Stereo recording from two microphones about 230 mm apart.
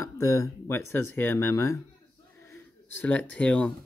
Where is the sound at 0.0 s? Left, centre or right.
Centre.